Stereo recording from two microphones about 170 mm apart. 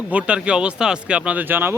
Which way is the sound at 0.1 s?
5° right (ahead or behind).